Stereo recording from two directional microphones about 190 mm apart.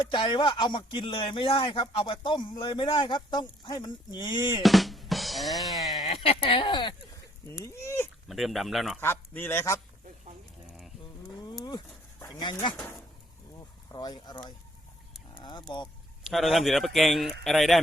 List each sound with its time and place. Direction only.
0.1 s speech: 25° left (ahead or behind)
4.6 s drum: centre (ahead or behind)
5.8 s a sound: centre (ahead or behind)
6.1 s speech: 30° left (ahead or behind); by 8.1 s 15° left (ahead or behind)
8.3 s speech: centre (ahead or behind)
9.0 s speech: 10° left (ahead or behind)
12.2 s speech: 20° left (ahead or behind)
13.9 s speech: 20° left (ahead or behind)
16.3 s speech: centre (ahead or behind)